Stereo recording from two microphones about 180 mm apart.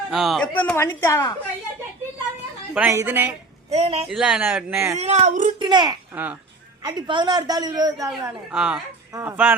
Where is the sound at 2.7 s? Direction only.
15° right (ahead or behind).